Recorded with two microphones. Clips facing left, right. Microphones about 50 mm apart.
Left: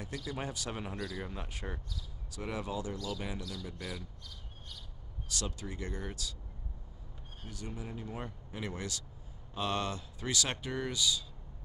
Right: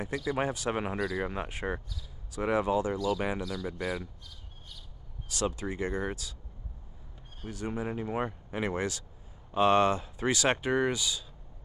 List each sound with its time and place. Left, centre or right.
0.0 s speech: right
3.3 s speech: right
5.3 s speech: right
7.4 s speech: right